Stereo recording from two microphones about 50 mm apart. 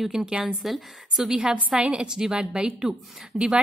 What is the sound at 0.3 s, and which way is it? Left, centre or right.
A woman's voice, right.